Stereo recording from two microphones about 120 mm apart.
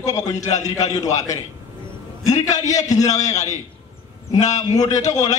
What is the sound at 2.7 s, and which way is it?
Speech, 80° left.